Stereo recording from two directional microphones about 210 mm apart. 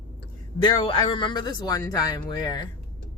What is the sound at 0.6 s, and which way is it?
A woman's voice, 25° left (ahead or behind).